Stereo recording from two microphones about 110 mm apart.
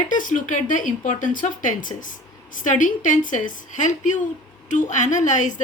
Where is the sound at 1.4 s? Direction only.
90° left.